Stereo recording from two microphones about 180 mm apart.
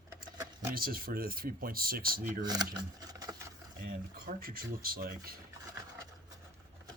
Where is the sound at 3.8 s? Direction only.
55° right (ahead or behind).